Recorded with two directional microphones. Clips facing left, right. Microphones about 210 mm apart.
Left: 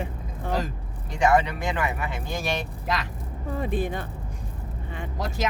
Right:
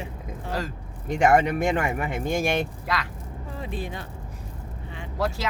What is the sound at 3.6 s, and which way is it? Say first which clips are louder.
Speech: left 6 dB; 50° left (ahead or behind).